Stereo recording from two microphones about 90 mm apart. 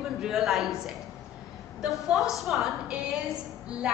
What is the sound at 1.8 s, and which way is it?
A woman's voice, centre (ahead or behind).